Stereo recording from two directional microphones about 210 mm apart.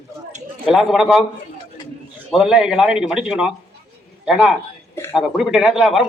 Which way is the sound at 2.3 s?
Centre (ahead or behind).